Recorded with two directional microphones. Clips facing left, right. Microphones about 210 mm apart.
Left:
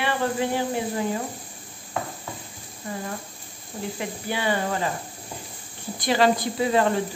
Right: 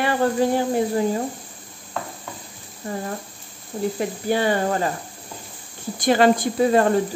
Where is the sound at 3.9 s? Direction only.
40° right (ahead or behind).